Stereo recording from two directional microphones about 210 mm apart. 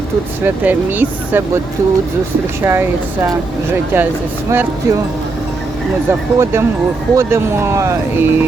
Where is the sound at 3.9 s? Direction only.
10° right (ahead or behind).